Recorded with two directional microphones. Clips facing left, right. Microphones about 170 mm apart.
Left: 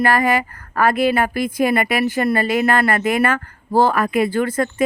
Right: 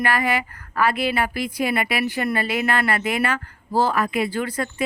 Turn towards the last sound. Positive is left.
turn(degrees=45)  # may be behind; listen again after turning